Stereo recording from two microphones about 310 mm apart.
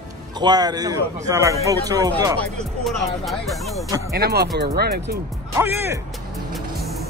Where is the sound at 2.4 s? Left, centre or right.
Centre.